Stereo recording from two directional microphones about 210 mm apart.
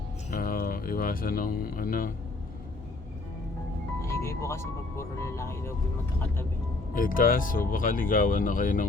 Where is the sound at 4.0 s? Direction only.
15° left (ahead or behind).